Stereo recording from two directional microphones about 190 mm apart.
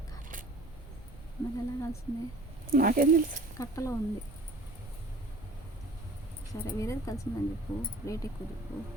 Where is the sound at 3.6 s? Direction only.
15° left (ahead or behind).